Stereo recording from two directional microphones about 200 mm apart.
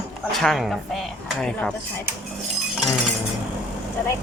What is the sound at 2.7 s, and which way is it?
Chink, centre (ahead or behind).